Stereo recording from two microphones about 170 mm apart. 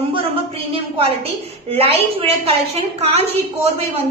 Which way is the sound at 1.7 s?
35° right (ahead or behind).